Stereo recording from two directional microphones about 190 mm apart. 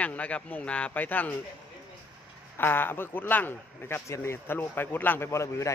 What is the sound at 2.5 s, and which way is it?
Speech, 10° left (ahead or behind).